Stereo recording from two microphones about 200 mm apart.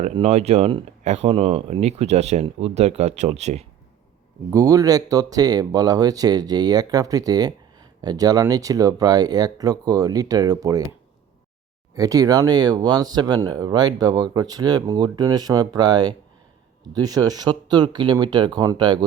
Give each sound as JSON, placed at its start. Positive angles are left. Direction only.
{"t": 0.0, "sound": "speech", "side_deg": -35}
{"t": 4.5, "sound": "speech", "side_deg": -15}
{"t": 11.9, "sound": "speech", "side_deg": -15}